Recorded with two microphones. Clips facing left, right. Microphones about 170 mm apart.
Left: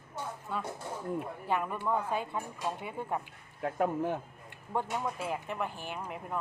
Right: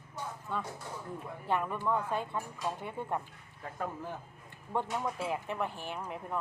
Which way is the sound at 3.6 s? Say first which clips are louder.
Left 9 dB; 65° left (ahead or behind).